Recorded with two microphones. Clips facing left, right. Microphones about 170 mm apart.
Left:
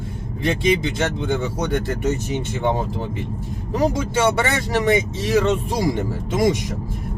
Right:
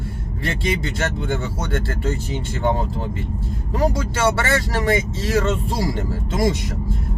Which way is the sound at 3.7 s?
20° left (ahead or behind).